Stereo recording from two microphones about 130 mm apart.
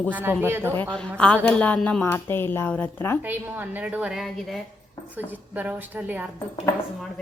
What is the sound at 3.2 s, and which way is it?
A woman's voice, 15° right (ahead or behind).